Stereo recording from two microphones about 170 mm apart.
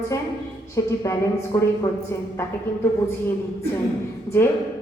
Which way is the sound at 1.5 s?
15° left (ahead or behind).